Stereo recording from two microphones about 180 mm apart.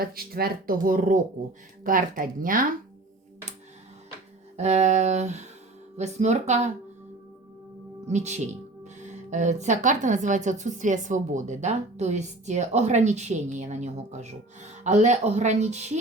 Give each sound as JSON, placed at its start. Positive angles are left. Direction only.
{"t": 0.0, "sound": "speech", "side_deg": -55}
{"t": 4.5, "sound": "speech", "side_deg": -40}
{"t": 8.0, "sound": "speech", "side_deg": -40}